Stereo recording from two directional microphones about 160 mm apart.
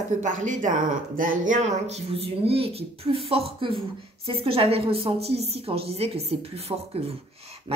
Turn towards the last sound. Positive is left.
turn(degrees=-40)  # may be behind; listen again after turning